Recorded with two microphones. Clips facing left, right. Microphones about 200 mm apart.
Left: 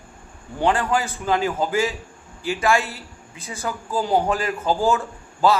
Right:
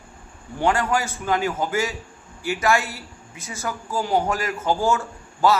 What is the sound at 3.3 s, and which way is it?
Speech, 30° left (ahead or behind).